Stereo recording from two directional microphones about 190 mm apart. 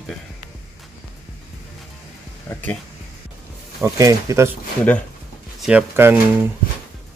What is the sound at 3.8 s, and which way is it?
Speech, 15° right (ahead or behind).